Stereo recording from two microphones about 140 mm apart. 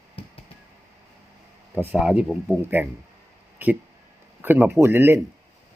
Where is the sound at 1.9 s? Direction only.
5° right (ahead or behind).